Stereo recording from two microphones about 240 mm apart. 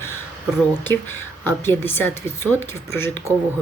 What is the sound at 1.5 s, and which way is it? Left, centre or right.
Speech, centre.